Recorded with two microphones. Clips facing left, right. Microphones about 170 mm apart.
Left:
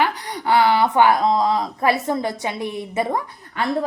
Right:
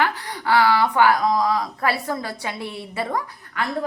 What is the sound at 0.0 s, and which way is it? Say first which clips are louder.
A woman's voice: left 2 dB; 20° left (ahead or behind).